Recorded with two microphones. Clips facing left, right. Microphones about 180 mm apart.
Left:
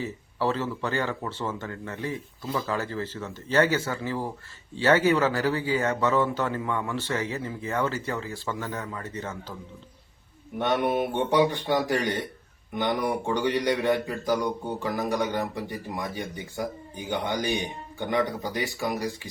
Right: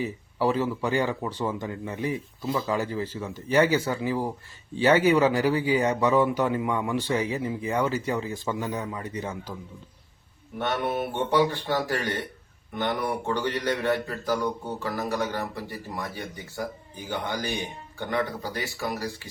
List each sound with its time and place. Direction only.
0.0 s a man's voice: 15° right (ahead or behind)
10.6 s speech: 15° left (ahead or behind)